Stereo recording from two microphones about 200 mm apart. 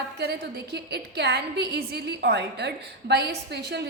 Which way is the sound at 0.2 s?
55° right (ahead or behind).